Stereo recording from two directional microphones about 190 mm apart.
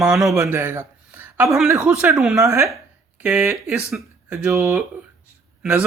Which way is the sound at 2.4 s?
15° right (ahead or behind).